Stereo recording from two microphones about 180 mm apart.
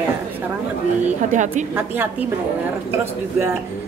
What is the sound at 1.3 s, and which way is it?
Speech, 45° right (ahead or behind).